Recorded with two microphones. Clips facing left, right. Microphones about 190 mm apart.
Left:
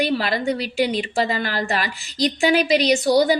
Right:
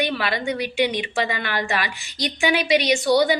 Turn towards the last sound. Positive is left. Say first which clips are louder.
# left 2 dB
turn(degrees=35)  # may be behind; listen again after turning